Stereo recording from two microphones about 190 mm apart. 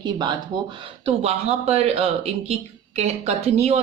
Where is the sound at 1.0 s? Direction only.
35° right (ahead or behind).